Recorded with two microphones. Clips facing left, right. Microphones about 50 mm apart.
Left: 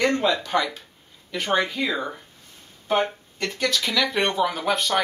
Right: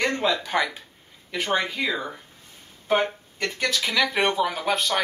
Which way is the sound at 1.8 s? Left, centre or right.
Centre.